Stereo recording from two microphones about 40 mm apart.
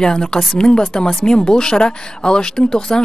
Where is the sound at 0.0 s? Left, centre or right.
Centre.